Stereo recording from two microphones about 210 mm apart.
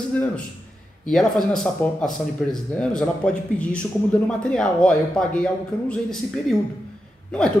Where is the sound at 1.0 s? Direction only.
Centre (ahead or behind).